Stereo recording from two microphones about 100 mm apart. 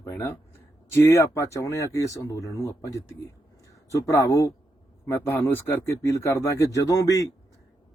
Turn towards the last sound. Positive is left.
turn(degrees=35)  # may be behind; listen again after turning